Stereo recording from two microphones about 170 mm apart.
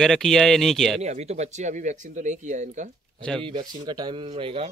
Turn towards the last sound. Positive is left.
turn(degrees=-35)  # may be behind; listen again after turning